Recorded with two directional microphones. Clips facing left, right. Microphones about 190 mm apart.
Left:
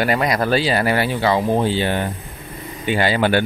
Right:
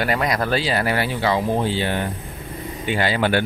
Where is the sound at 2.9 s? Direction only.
15° left (ahead or behind).